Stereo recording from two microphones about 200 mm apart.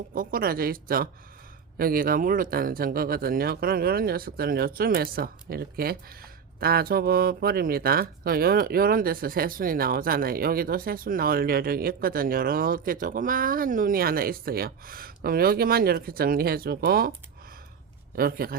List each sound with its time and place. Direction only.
0.1 s speech: 45° right (ahead or behind)
18.1 s speech: 50° right (ahead or behind)